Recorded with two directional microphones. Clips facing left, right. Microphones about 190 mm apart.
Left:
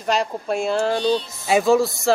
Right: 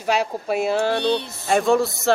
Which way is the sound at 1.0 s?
65° right (ahead or behind).